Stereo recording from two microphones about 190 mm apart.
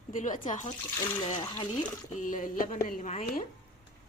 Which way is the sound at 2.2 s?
45° left (ahead or behind).